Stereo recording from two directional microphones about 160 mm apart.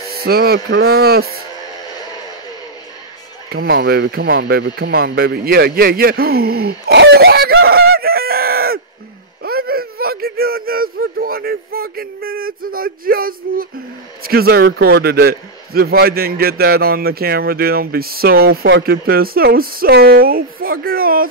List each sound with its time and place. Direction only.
0.2 s a man's voice: 75° right (ahead or behind)
3.4 s a man's voice: 75° right (ahead or behind)